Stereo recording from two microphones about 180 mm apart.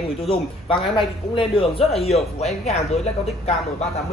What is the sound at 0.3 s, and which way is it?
Speech, 30° left (ahead or behind).